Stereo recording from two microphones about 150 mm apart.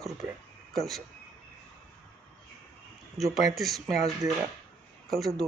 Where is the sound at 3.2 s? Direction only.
Centre (ahead or behind).